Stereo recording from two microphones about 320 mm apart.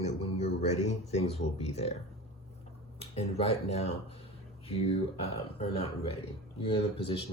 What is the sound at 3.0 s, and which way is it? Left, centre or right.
Speech, centre.